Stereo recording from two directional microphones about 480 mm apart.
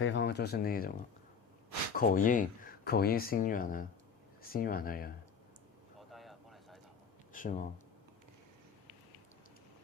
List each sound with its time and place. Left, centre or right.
0.0 s speech: left
2.0 s speech: centre
6.0 s a sound: centre
7.3 s speech: centre